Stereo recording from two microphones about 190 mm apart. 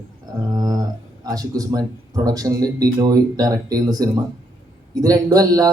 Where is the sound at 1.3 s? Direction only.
20° right (ahead or behind).